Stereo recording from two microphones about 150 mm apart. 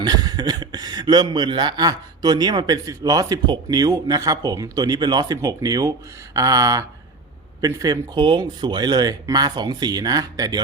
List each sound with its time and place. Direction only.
0.0 s speech: 25° right (ahead or behind)